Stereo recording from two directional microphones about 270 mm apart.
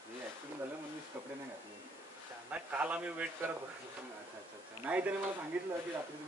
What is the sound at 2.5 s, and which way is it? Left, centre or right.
Speech, centre.